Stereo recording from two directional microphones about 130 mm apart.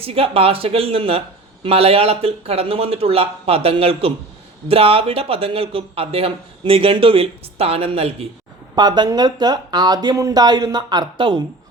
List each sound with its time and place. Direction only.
0.0 s speech: 45° right (ahead or behind)
8.7 s speech: 35° right (ahead or behind)